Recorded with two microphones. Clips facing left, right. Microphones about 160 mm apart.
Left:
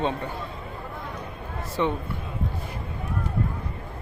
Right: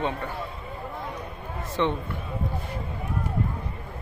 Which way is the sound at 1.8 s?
10° left (ahead or behind).